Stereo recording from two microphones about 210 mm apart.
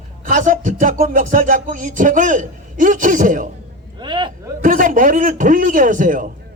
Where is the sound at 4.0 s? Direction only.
20° right (ahead or behind).